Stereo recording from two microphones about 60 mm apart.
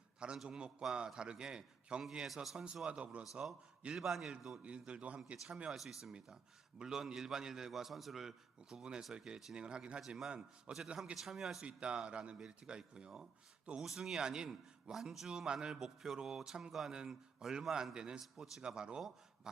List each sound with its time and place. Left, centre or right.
0.4 s a man's voice: centre
2.8 s a man's voice: centre
3.8 s a man's voice: centre
5.7 s a man's voice: centre
11.6 s a man's voice: centre